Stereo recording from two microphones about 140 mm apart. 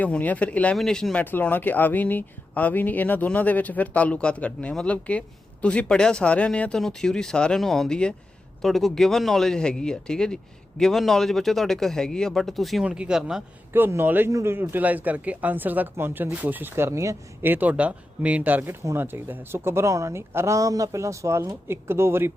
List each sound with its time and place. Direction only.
0.0 s a man's voice: 10° left (ahead or behind); by 13.4 s 5° right (ahead or behind)
13.7 s speech: 15° right (ahead or behind)